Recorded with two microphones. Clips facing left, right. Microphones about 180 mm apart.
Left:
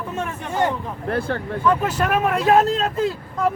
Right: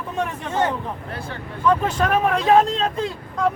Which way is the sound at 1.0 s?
55° left (ahead or behind).